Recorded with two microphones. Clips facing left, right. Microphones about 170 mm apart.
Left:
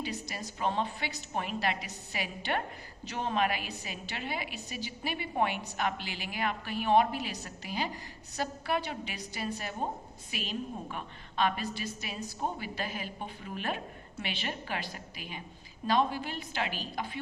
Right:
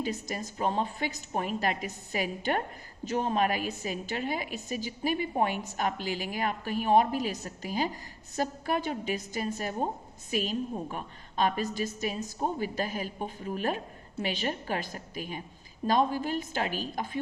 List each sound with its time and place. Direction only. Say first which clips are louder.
0.0 s a woman's voice: right 5 dB; 45° right (ahead or behind)